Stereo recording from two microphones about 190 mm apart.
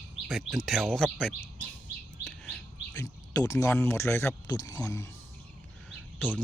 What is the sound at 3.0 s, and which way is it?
Speech, 15° left (ahead or behind).